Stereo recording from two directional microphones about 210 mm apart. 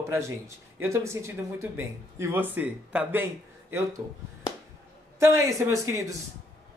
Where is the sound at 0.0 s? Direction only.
15° right (ahead or behind).